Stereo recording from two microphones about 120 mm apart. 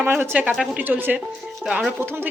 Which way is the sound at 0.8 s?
15° right (ahead or behind).